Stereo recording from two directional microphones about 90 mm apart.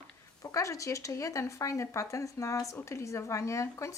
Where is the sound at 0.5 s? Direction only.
35° left (ahead or behind).